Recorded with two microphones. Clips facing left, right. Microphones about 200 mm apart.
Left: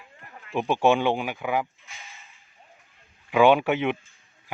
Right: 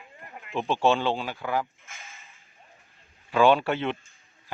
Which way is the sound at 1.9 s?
50° right (ahead or behind).